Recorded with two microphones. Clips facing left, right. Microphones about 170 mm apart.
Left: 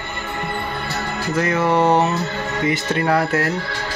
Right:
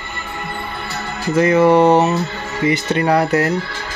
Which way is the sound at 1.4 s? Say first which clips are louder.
Right 6 dB; 5° right (ahead or behind).